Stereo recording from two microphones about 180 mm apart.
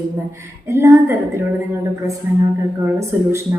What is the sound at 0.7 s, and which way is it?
Speech, 15° right (ahead or behind).